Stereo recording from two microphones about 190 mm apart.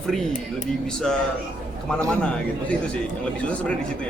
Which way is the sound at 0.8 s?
5° left (ahead or behind).